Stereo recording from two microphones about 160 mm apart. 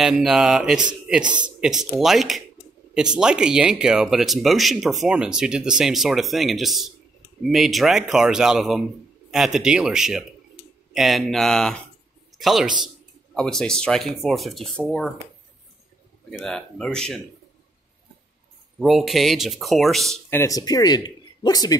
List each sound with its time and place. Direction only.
0.0 s a man's voice: centre (ahead or behind)
16.3 s speech: 5° left (ahead or behind)
18.8 s speech: centre (ahead or behind)
20.2 s speech: 15° left (ahead or behind)